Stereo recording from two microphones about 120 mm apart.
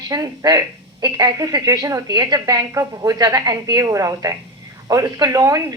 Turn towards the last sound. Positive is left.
turn(degrees=-30)  # may be behind; listen again after turning